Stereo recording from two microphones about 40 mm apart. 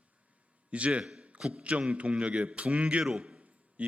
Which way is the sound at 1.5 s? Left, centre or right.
Right.